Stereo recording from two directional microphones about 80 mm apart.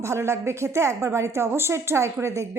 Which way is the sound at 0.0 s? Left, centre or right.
Right.